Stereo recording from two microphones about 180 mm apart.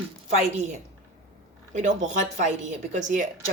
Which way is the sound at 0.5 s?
40° right (ahead or behind).